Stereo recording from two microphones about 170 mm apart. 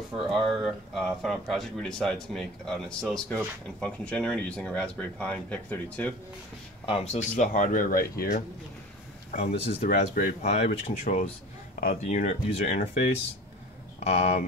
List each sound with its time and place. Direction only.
0.1 s speech: 5° right (ahead or behind)
6.9 s speech: 40° left (ahead or behind)
9.8 s speech: 60° left (ahead or behind)
10.4 s speech: 40° left (ahead or behind)